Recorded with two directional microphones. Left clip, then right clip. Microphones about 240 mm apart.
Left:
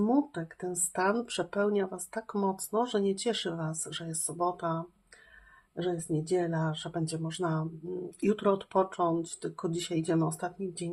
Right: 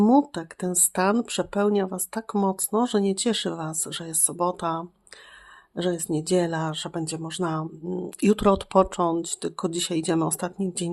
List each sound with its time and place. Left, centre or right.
0.0 s speech: right